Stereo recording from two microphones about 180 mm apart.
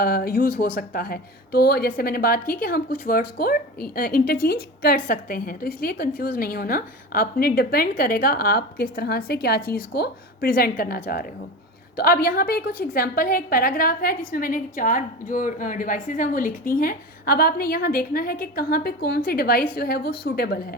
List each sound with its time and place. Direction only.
0.0 s a woman's voice: 55° left (ahead or behind)